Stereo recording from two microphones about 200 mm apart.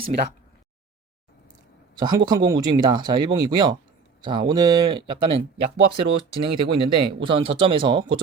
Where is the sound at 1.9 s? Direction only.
20° right (ahead or behind).